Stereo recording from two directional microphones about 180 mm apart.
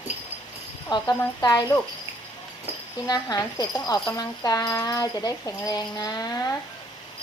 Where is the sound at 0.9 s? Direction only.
20° left (ahead or behind).